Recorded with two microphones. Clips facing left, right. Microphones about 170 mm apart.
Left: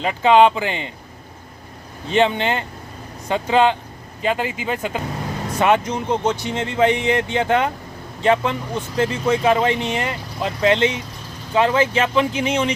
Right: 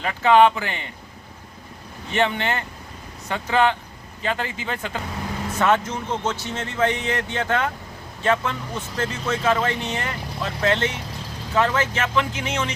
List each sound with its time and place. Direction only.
0.0 s speech: 20° left (ahead or behind)
2.0 s speech: 20° left (ahead or behind)